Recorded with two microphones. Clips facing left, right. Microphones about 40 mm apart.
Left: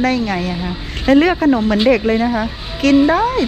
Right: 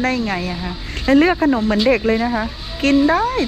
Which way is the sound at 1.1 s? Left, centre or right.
Left.